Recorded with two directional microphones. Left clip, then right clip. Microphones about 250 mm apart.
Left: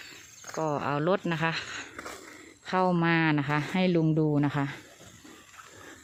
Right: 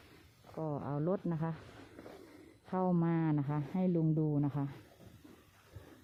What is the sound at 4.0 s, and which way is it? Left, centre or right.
Speech, left.